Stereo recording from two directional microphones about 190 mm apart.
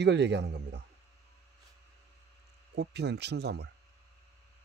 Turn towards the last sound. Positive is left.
turn(degrees=-60)  # may be behind; listen again after turning